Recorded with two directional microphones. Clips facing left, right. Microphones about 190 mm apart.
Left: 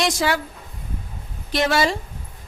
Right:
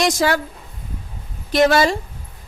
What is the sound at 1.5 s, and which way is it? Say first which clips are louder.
Speech: right 5 dB; 45° right (ahead or behind).